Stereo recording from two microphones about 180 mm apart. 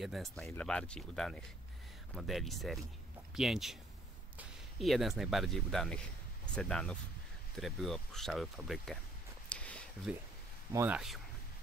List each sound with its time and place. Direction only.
0.0 s speech: centre (ahead or behind)
9.5 s a sound: 5° left (ahead or behind)
10.1 s speech: 5° right (ahead or behind)
10.7 s speech: 15° right (ahead or behind)